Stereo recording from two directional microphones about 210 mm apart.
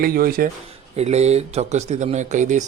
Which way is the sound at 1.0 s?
30° right (ahead or behind).